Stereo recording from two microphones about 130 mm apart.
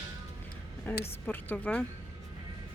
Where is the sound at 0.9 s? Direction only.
15° left (ahead or behind).